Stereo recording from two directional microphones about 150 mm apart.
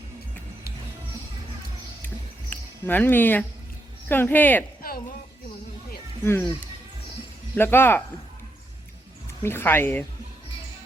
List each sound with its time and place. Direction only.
2.5 s speech: 10° left (ahead or behind)
4.8 s a sound: 80° left
6.2 s speech: 15° left (ahead or behind)
7.5 s speech: 15° left (ahead or behind)
9.4 s speech: 15° left (ahead or behind)